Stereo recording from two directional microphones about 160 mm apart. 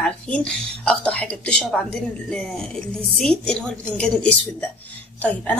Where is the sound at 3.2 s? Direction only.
5° left (ahead or behind).